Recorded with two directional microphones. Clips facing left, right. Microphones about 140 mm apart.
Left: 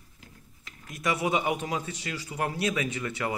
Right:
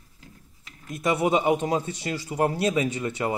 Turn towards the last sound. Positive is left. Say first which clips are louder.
# right 4 dB
turn(degrees=-25)  # may be behind; listen again after turning